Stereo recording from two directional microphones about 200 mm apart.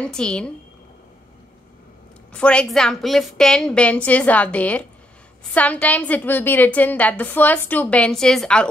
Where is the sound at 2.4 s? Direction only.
5° left (ahead or behind).